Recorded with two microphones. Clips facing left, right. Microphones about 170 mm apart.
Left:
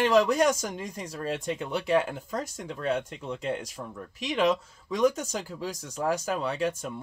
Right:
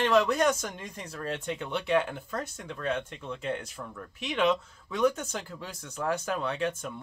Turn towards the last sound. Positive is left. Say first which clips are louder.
# left 2 dB
turn(degrees=10)  # may be behind; listen again after turning